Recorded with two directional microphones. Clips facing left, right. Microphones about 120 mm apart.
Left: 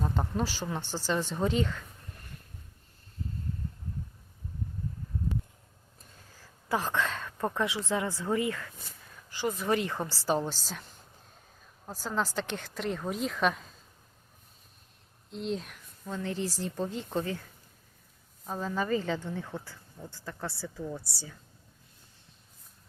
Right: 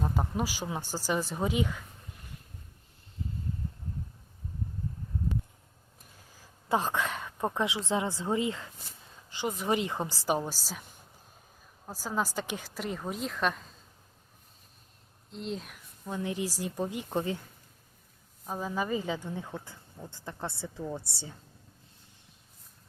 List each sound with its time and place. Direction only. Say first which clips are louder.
0.0 s speech: even; 10° right (ahead or behind)
6.3 s a woman's voice: right 2 dB; 15° right (ahead or behind); by 13.7 s centre (ahead or behind)
15.3 s a woman's voice: left 3 dB; centre (ahead or behind)
16.0 s speech: even; 15° right (ahead or behind)
18.4 s speech: left 1 dB; 10° right (ahead or behind)